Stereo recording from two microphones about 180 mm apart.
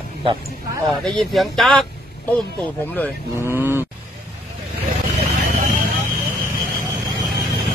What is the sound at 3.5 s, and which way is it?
Cattle, 10° right (ahead or behind).